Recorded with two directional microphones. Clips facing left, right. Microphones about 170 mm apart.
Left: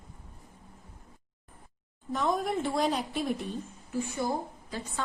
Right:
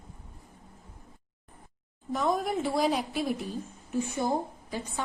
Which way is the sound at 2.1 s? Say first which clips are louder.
Right 1 dB; 5° right (ahead or behind).